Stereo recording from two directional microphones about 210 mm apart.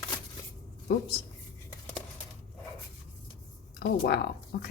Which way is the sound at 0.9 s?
50° left (ahead or behind).